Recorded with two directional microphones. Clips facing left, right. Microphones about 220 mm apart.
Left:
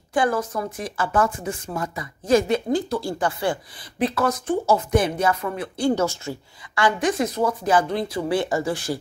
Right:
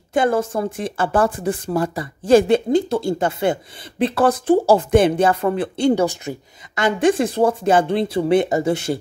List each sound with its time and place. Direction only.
0.1 s speech: 25° right (ahead or behind)
5.9 s speech: 20° right (ahead or behind)